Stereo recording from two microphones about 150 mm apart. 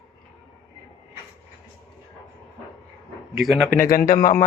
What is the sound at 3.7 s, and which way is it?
Speech, 70° left (ahead or behind).